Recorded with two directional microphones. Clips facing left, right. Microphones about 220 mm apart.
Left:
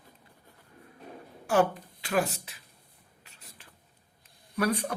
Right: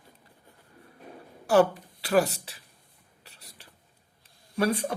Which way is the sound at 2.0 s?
35° right (ahead or behind).